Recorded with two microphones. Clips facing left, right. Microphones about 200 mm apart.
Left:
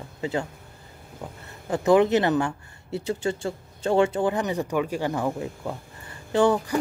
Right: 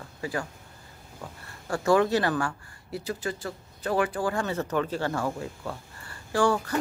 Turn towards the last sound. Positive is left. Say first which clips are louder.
# left 4 dB
turn(degrees=15)  # may be behind; listen again after turning